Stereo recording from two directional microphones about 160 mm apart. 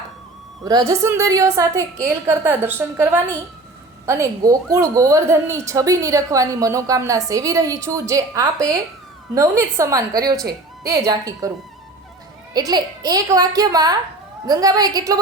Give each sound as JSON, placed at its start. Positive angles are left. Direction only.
{"t": 0.6, "sound": "a woman's voice", "side_deg": -25}
{"t": 12.5, "sound": "a woman's voice", "side_deg": -25}